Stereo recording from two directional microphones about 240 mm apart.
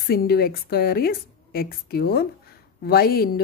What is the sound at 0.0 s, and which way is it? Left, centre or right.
Speech, left.